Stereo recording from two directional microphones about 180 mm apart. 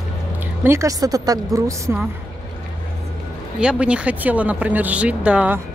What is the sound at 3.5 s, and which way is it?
Speech, 5° right (ahead or behind).